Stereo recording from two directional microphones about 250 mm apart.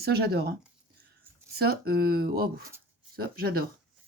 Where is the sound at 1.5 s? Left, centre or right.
Right.